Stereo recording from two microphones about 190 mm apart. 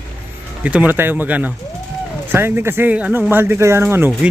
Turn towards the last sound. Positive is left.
turn(degrees=-10)  # may be behind; listen again after turning